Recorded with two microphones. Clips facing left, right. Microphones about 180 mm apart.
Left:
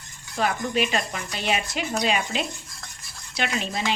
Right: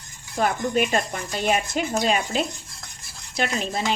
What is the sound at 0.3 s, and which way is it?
A woman's voice, 45° right (ahead or behind).